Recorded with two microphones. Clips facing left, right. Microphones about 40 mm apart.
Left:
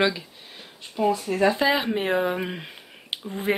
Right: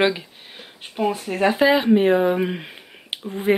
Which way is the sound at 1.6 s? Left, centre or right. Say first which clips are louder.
Right 7 dB; centre.